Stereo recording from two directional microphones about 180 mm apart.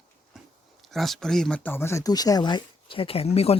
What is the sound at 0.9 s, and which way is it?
Speech, centre (ahead or behind).